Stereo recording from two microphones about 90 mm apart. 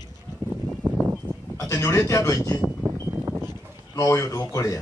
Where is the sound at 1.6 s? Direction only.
35° left (ahead or behind).